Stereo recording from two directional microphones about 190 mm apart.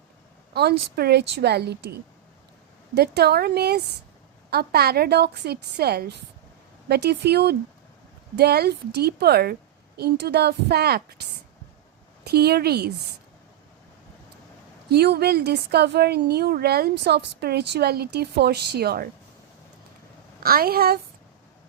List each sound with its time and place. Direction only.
0.5 s a woman's voice: 55° right (ahead or behind)
14.8 s a woman's voice: 60° right (ahead or behind)
20.4 s a woman's voice: 50° right (ahead or behind)